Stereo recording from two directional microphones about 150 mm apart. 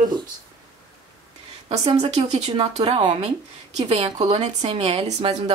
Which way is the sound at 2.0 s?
45° right (ahead or behind).